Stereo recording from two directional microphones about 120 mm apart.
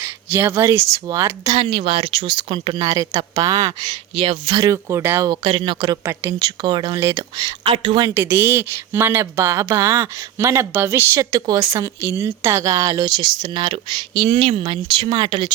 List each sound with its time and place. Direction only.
0.0 s speech: 20° right (ahead or behind)
1.5 s speech: 45° right (ahead or behind)
2.8 s a woman's voice: 30° right (ahead or behind)
4.1 s speech: 50° right (ahead or behind)
4.6 s a woman's voice: 25° right (ahead or behind)
5.4 s speech: 50° right (ahead or behind)
7.6 s speech: 50° right (ahead or behind)
8.0 s a woman's voice: 20° right (ahead or behind); by 15.5 s 45° right (ahead or behind)